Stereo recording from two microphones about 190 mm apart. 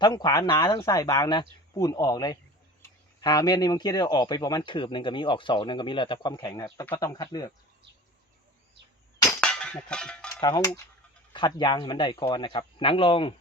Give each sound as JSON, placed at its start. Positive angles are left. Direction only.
{"t": 0.0, "sound": "speech", "side_deg": 20}
{"t": 9.4, "sound": "cutlery", "side_deg": 5}
{"t": 10.4, "sound": "speech", "side_deg": 20}